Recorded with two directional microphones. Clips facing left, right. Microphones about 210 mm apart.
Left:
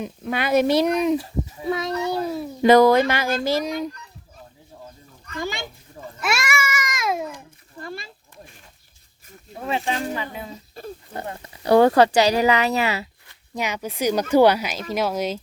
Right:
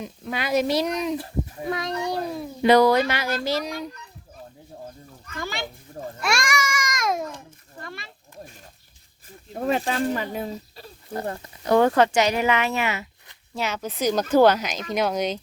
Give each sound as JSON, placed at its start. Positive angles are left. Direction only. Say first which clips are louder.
{"t": 0.0, "sound": "speech", "louder": "left 4 dB", "side_deg": 55}
{"t": 1.7, "sound": "a child's voice", "louder": "left 3 dB", "side_deg": 0}
{"t": 2.6, "sound": "speech", "louder": "left 3 dB", "side_deg": 45}
{"t": 6.1, "sound": "a child's voice", "louder": "left 1 dB", "side_deg": 5}
{"t": 9.6, "sound": "speech", "louder": "right 2 dB", "side_deg": -45}
{"t": 10.8, "sound": "speech", "louder": "left 9 dB", "side_deg": 50}
{"t": 11.6, "sound": "speech", "louder": "left 3 dB", "side_deg": 30}
{"t": 13.6, "sound": "speech", "louder": "left 1 dB", "side_deg": 15}